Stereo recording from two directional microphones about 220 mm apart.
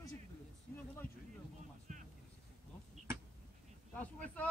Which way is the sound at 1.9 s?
35° right (ahead or behind).